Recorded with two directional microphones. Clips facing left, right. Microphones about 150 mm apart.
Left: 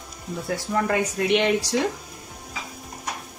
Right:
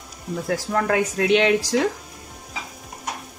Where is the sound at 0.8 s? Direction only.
90° right.